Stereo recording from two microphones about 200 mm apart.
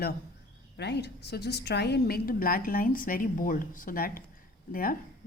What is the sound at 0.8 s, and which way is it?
A woman's voice, 55° left (ahead or behind).